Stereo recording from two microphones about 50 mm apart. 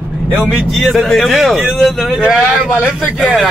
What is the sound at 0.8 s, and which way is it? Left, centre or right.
Speech, centre.